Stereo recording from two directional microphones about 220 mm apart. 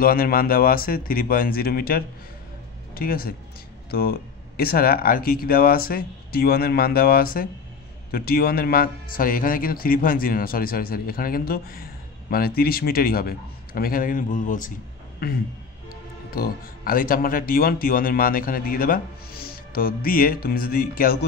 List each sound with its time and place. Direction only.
0.0 s a man's voice: 40° left (ahead or behind)